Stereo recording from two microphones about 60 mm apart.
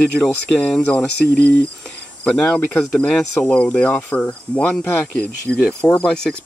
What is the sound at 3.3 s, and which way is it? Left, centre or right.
Speech, left.